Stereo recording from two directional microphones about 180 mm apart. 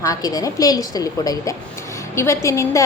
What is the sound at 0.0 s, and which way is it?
A woman's voice, 20° left (ahead or behind).